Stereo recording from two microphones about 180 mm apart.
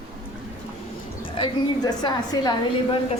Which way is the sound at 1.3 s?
25° left (ahead or behind).